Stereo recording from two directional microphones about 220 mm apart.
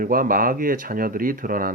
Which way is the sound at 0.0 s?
40° right (ahead or behind).